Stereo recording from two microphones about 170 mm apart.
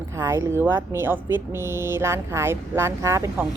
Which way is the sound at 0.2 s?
15° right (ahead or behind).